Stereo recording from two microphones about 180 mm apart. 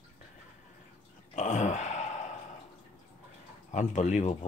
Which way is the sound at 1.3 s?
45° left (ahead or behind).